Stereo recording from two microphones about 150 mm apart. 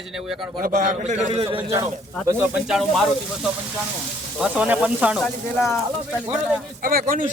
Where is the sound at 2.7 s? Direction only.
Centre (ahead or behind).